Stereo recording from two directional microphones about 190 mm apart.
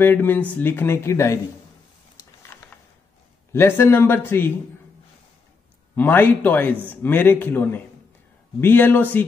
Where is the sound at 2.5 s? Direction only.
15° left (ahead or behind).